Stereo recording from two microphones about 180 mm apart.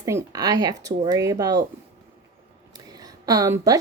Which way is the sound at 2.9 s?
20° right (ahead or behind).